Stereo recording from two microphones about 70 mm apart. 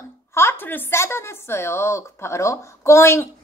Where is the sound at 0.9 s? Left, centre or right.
Left.